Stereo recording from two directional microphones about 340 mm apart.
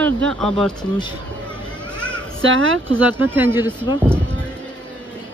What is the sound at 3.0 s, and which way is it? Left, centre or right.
Speech, centre.